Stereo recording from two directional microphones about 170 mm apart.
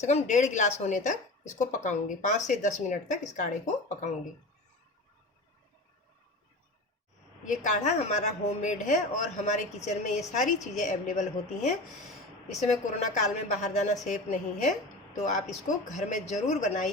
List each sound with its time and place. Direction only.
0.0 s speech: 45° left (ahead or behind)
7.4 s speech: 45° left (ahead or behind)